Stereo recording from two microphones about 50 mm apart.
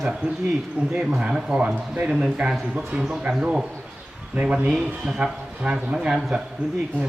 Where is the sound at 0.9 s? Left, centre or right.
Right.